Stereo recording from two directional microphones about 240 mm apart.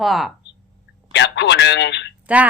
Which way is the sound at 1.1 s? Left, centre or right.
Left.